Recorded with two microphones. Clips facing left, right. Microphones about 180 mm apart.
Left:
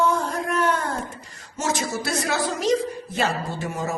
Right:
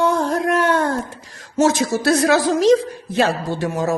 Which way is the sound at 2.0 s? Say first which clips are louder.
Right 9 dB; 90° right.